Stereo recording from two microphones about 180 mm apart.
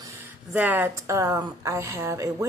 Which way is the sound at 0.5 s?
10° right (ahead or behind).